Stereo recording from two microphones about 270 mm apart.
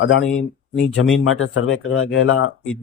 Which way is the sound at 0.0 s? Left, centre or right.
Left.